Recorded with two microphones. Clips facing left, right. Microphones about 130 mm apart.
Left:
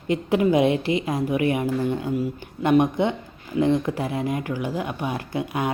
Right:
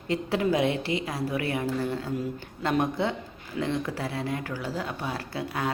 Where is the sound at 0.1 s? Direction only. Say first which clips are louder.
Left 6 dB; 15° left (ahead or behind).